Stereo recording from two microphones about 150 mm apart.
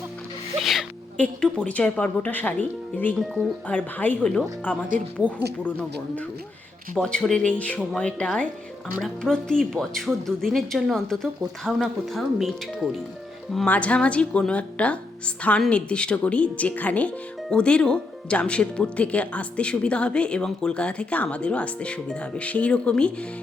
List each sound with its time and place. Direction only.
0.6 s speech: centre (ahead or behind)
6.9 s speech: 5° left (ahead or behind)